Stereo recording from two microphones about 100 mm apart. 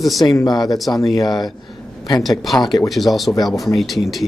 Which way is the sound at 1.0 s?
Centre (ahead or behind).